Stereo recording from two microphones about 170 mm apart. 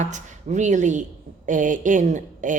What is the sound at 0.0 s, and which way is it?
A woman's voice, 45° right (ahead or behind).